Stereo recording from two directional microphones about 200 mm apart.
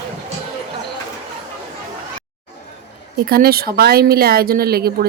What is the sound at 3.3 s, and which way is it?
Speech, 50° right (ahead or behind).